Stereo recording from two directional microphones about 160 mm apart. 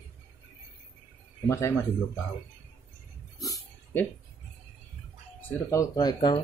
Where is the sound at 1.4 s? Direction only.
15° left (ahead or behind).